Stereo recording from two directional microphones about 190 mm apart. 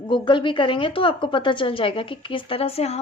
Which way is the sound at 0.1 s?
25° left (ahead or behind).